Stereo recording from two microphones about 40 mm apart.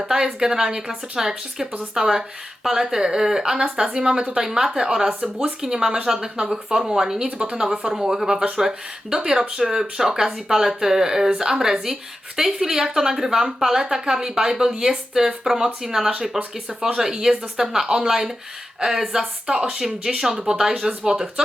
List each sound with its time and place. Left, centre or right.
0.0 s speech: centre
7.3 s speech: right
7.5 s speech: centre
17.0 s speech: centre
19.5 s speech: right